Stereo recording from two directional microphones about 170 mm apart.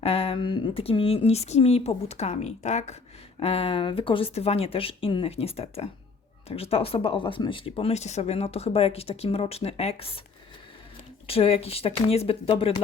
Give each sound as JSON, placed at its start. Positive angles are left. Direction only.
{"t": 0.0, "sound": "speech", "side_deg": 35}
{"t": 11.3, "sound": "speech", "side_deg": 35}